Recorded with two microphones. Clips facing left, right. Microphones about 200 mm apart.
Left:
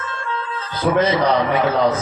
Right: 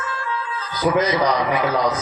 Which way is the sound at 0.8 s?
30° left (ahead or behind).